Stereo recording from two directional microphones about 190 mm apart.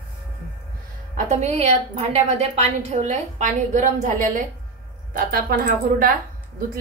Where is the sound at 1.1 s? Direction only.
35° right (ahead or behind).